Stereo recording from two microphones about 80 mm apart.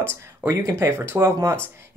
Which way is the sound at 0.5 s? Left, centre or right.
Right.